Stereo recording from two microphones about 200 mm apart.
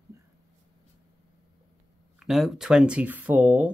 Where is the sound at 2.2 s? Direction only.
Centre (ahead or behind).